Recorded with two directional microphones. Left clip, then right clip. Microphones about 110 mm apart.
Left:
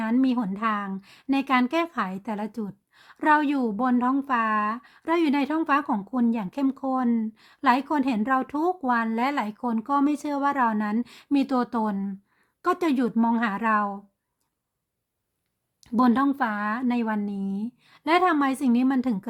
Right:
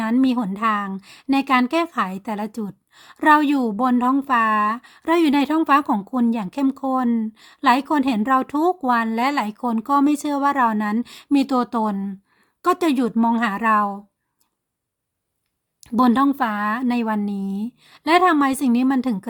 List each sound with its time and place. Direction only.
0.0 s a woman's voice: 40° right (ahead or behind)
15.8 s speech: 40° right (ahead or behind)